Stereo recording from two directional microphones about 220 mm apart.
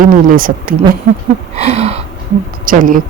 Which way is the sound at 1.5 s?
30° right (ahead or behind).